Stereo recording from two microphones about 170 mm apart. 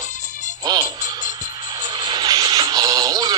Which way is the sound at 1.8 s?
25° right (ahead or behind).